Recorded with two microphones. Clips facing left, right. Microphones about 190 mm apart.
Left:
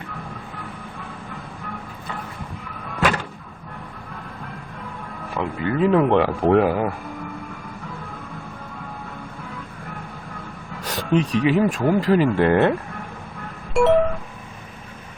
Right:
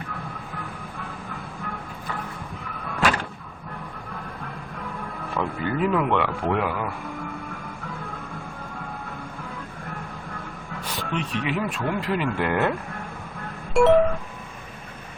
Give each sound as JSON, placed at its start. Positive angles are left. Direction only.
{"t": 5.3, "sound": "speech", "side_deg": 15}
{"t": 10.8, "sound": "speech", "side_deg": 40}
{"t": 13.7, "sound": "music", "side_deg": 0}